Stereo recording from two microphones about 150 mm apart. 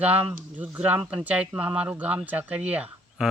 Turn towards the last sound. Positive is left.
turn(degrees=-5)  # may be behind; listen again after turning